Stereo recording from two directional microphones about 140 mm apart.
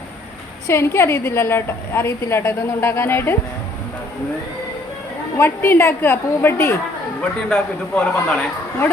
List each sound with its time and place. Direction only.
0.7 s a woman's voice: 20° left (ahead or behind)
5.4 s a woman's voice: 15° left (ahead or behind)